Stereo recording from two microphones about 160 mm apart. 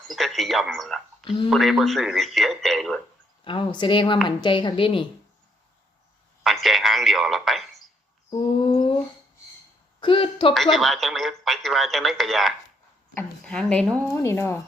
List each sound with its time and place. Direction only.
0.1 s speech: centre (ahead or behind)
3.4 s speech: 30° left (ahead or behind)
6.4 s speech: centre (ahead or behind)
8.3 s speech: 30° left (ahead or behind)
10.0 s speech: 30° left (ahead or behind)
10.5 s speech: centre (ahead or behind)
14.2 s speech: 15° left (ahead or behind)